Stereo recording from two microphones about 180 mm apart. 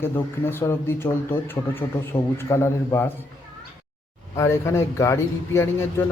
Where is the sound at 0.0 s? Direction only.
10° left (ahead or behind).